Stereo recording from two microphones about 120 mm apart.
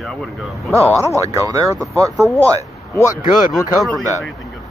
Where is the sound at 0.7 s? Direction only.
25° right (ahead or behind).